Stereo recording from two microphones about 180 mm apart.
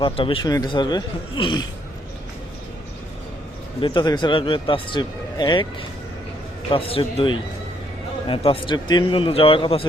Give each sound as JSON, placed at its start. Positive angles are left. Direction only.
{"t": 0.0, "sound": "speech", "side_deg": 30}
{"t": 3.8, "sound": "speech", "side_deg": 25}
{"t": 6.7, "sound": "a man's voice", "side_deg": 30}
{"t": 8.3, "sound": "speech", "side_deg": 30}